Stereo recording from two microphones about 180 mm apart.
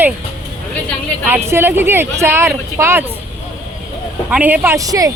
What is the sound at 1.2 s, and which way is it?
Speech, 10° right (ahead or behind).